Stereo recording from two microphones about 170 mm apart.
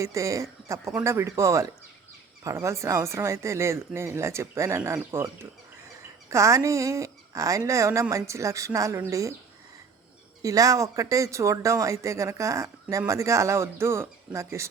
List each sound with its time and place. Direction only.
0.0 s speech: 20° right (ahead or behind)
10.4 s speech: 20° right (ahead or behind)